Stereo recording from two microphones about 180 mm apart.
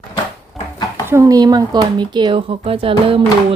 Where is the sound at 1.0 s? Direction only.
15° right (ahead or behind).